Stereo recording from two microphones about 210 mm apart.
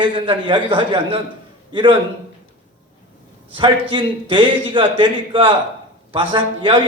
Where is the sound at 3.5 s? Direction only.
25° right (ahead or behind).